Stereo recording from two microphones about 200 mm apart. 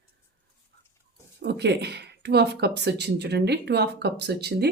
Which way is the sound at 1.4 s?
55° right (ahead or behind).